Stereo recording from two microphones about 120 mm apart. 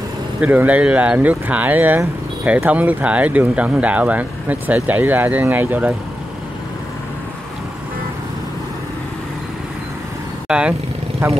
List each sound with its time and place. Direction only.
0.4 s speech: 15° right (ahead or behind)
10.5 s speech: 10° right (ahead or behind)